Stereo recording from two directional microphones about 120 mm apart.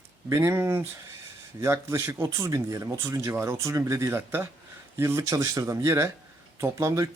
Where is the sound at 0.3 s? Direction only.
25° right (ahead or behind).